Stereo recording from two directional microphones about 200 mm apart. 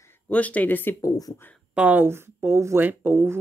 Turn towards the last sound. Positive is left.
turn(degrees=-10)  # may be behind; listen again after turning